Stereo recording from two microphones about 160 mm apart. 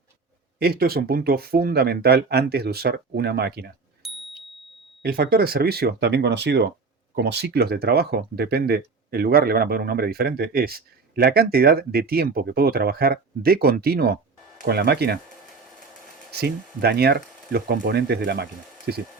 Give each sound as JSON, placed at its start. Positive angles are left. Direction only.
{"t": 0.6, "sound": "speech", "side_deg": -75}
{"t": 4.0, "sound": "a sound", "side_deg": 0}
{"t": 5.0, "sound": "speech", "side_deg": -75}
{"t": 16.4, "sound": "speech", "side_deg": -80}